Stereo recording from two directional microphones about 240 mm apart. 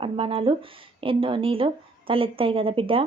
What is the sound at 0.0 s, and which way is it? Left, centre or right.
Speech, right.